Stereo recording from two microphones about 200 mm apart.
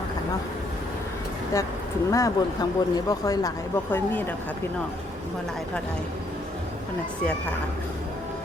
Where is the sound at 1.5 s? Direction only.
15° left (ahead or behind).